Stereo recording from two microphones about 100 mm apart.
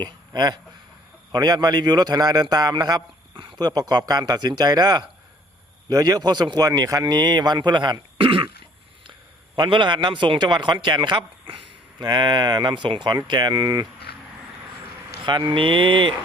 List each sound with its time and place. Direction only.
0.0 s a man's voice: 45° right (ahead or behind); by 8.4 s 60° right (ahead or behind)
9.6 s speech: 50° right (ahead or behind)
11.4 s a sound: 60° right (ahead or behind)
12.0 s speech: 45° right (ahead or behind)
15.2 s speech: 50° right (ahead or behind)